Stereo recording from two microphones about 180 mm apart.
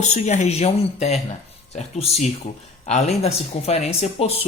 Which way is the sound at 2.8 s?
35° left (ahead or behind).